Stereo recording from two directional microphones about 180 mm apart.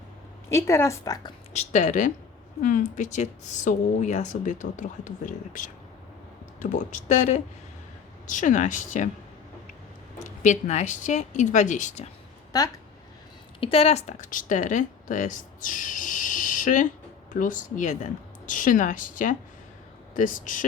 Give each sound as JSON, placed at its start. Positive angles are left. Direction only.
{"t": 0.5, "sound": "speech", "side_deg": 15}
{"t": 1.5, "sound": "speech", "side_deg": 40}
{"t": 10.2, "sound": "speech", "side_deg": 40}
{"t": 13.6, "sound": "speech", "side_deg": 30}